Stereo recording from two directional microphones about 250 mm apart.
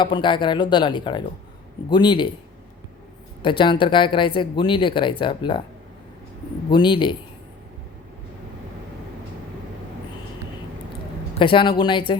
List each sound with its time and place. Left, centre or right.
0.0 s speech: centre
3.4 s speech: centre
6.7 s speech: centre
11.3 s speech: centre